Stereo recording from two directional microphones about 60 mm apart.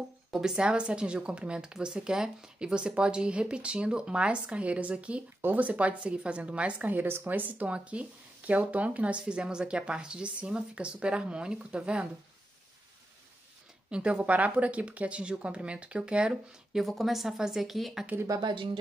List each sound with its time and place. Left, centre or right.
0.3 s speech: centre
13.8 s speech: centre
16.7 s speech: centre